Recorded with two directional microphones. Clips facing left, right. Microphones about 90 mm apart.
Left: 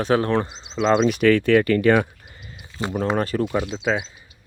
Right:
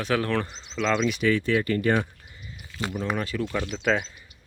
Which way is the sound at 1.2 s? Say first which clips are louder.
Left 7 dB; 70° left (ahead or behind).